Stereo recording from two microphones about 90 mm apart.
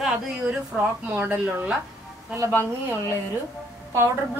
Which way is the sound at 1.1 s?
25° right (ahead or behind).